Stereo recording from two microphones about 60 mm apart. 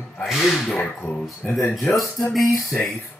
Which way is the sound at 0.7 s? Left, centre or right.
Left.